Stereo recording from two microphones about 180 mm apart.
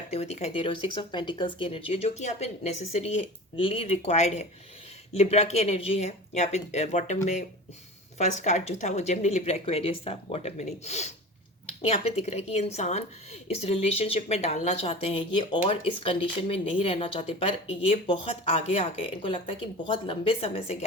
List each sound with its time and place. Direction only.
0.1 s speech: 35° left (ahead or behind)
8.2 s speech: 40° left (ahead or behind)